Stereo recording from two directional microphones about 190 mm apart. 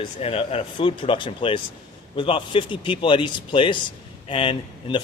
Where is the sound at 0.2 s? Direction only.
30° left (ahead or behind).